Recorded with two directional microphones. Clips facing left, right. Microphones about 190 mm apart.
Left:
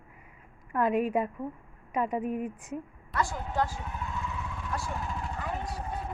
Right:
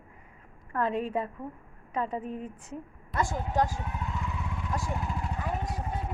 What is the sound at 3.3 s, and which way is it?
Speech, 40° right (ahead or behind).